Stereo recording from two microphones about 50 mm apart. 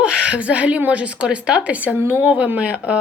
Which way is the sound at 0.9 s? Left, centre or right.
Right.